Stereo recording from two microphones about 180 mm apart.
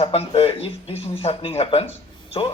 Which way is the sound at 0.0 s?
35° left (ahead or behind).